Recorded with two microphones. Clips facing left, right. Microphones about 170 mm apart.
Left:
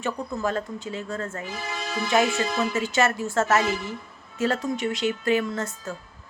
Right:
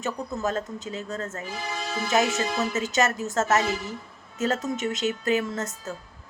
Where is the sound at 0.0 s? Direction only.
40° right (ahead or behind).